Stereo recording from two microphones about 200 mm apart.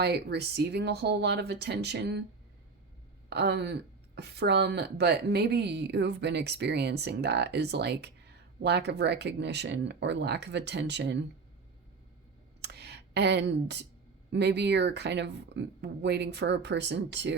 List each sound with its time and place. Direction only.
0.0 s speech: 55° right (ahead or behind)
3.2 s speech: 55° right (ahead or behind)
12.6 s a sound: 55° right (ahead or behind)
14.3 s speech: 60° right (ahead or behind)